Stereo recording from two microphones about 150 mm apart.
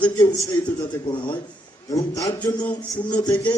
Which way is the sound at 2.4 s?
10° left (ahead or behind).